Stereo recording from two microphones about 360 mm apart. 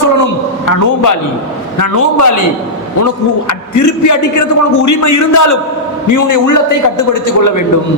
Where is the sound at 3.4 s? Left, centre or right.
Left.